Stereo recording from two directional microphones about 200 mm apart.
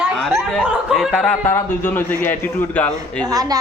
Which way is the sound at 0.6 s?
Centre (ahead or behind).